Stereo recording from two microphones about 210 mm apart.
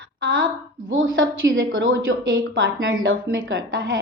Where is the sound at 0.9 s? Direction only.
70° right (ahead or behind).